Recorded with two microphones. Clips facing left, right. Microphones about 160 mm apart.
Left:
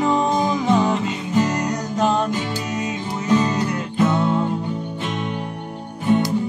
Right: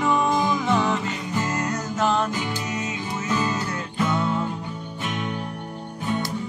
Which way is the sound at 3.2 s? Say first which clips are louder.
Left 7 dB; 20° left (ahead or behind).